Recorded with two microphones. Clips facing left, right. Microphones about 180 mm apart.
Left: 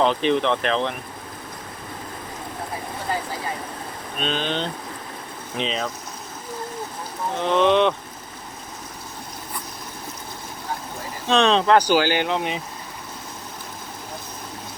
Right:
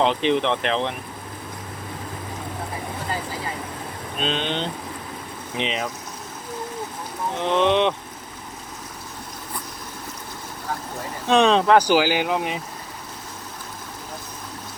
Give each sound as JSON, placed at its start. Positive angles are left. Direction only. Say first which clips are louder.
{"t": 0.0, "sound": "speech", "louder": "even", "side_deg": -20}
{"t": 4.2, "sound": "speech", "louder": "even", "side_deg": -25}
{"t": 7.5, "sound": "speech", "louder": "left 2 dB", "side_deg": -20}
{"t": 11.3, "sound": "speech", "louder": "right 1 dB", "side_deg": -15}